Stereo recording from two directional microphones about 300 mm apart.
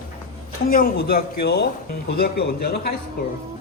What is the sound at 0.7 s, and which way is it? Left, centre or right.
Speech, left.